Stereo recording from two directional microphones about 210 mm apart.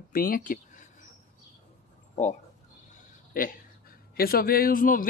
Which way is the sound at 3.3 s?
40° left (ahead or behind).